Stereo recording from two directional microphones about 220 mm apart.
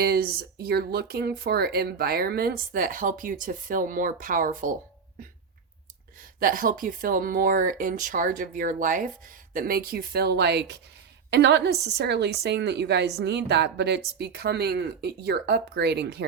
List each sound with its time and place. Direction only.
0.0 s a woman's voice: 45° right (ahead or behind)
6.4 s a woman's voice: 40° right (ahead or behind)